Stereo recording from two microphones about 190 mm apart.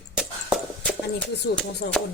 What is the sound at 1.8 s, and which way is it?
Speech, 55° left (ahead or behind).